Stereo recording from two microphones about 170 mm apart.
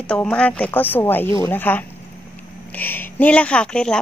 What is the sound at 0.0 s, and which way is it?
A woman's voice, 5° left (ahead or behind).